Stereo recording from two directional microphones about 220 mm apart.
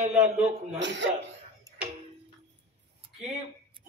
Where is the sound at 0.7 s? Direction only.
55° right (ahead or behind).